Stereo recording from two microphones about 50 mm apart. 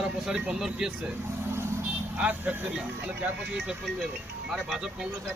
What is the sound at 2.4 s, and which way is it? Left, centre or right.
Speech, right.